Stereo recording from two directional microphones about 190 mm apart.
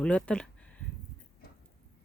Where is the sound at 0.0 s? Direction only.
5° left (ahead or behind).